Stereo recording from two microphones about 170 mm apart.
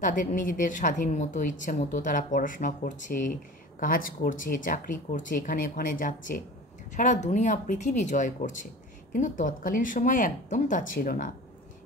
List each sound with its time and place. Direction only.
0.0 s a woman's voice: 50° left (ahead or behind)